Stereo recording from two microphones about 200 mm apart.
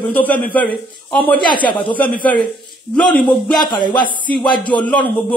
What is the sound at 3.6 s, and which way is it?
Speech, 20° left (ahead or behind).